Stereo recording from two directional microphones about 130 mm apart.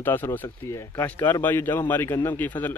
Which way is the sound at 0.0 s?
15° left (ahead or behind).